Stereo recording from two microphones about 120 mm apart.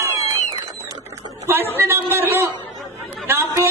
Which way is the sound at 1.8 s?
20° right (ahead or behind).